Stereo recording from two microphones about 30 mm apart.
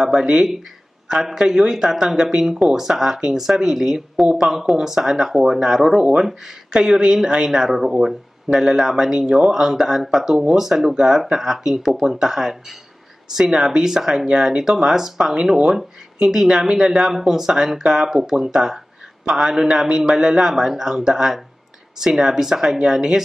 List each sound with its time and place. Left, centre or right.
0.0 s a man's voice: centre
1.4 s a man's voice: right
6.7 s a man's voice: right
14.2 s a man's voice: right